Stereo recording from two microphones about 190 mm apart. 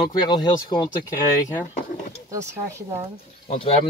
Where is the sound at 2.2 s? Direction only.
15° right (ahead or behind).